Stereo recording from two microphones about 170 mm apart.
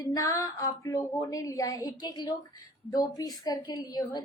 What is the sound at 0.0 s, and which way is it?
Speech, 20° left (ahead or behind).